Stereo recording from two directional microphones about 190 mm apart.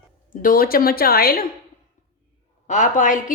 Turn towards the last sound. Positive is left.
turn(degrees=45)  # may be behind; listen again after turning